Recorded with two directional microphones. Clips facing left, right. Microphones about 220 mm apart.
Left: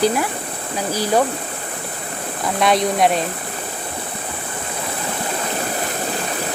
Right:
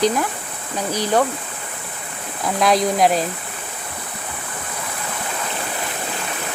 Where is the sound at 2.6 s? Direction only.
Centre (ahead or behind).